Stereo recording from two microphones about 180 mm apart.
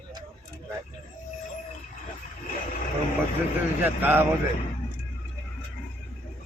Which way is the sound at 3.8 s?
10° right (ahead or behind).